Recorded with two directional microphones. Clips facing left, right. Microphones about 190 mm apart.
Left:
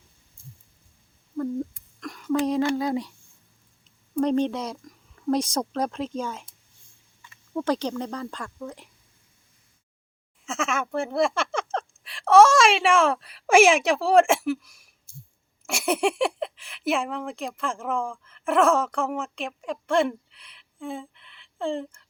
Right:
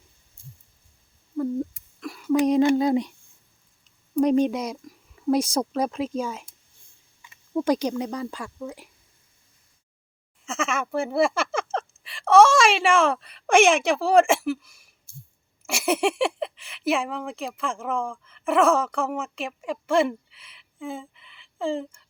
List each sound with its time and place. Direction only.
1.4 s a sound: 5° right (ahead or behind)
4.1 s a woman's voice: 10° right (ahead or behind)
10.4 s speech: centre (ahead or behind)